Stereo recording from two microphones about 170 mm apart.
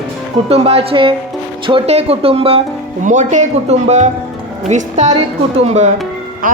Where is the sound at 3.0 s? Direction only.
45° right (ahead or behind).